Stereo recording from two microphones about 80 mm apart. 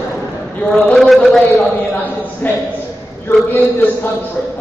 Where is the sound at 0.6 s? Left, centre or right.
Centre.